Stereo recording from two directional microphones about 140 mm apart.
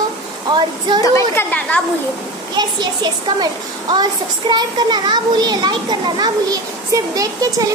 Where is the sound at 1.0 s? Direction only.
20° left (ahead or behind).